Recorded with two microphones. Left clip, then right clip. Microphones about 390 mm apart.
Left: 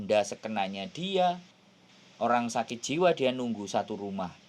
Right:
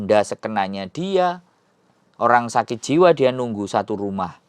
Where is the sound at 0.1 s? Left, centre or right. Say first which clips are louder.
Right 9 dB; right.